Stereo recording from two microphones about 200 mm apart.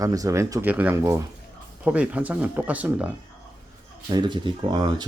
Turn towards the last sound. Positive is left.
turn(degrees=-20)  # may be behind; listen again after turning